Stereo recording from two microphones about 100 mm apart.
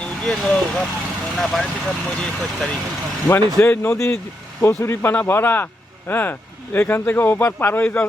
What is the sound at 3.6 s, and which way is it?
Speech, 25° left (ahead or behind).